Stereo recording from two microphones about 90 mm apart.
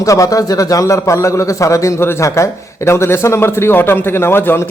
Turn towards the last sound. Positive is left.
turn(degrees=25)  # may be behind; listen again after turning